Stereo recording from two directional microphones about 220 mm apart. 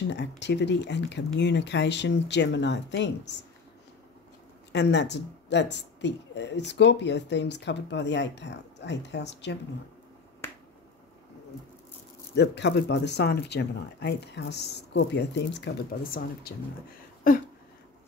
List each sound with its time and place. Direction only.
0.1 s speech: 50° left (ahead or behind)
4.7 s speech: 50° left (ahead or behind)
12.4 s speech: 50° left (ahead or behind)